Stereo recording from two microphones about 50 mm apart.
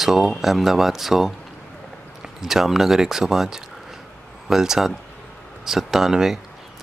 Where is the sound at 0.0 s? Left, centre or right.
Centre.